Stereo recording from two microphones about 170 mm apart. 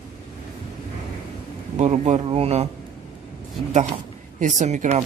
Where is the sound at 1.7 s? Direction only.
40° right (ahead or behind).